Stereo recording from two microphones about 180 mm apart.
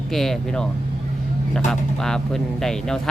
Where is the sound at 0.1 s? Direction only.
Centre (ahead or behind).